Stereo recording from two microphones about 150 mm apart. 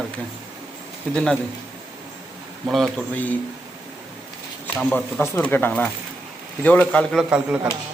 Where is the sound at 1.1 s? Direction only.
5° left (ahead or behind).